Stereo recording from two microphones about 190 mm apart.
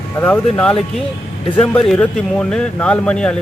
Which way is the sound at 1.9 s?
5° left (ahead or behind).